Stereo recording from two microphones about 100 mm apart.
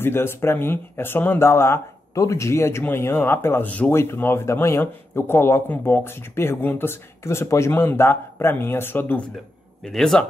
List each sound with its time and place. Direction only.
0.0 s speech: 25° left (ahead or behind)
3.9 s speech: 25° left (ahead or behind)
9.8 s a man's voice: 5° left (ahead or behind)